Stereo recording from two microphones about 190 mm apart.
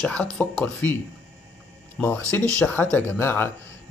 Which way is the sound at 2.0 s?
Centre (ahead or behind).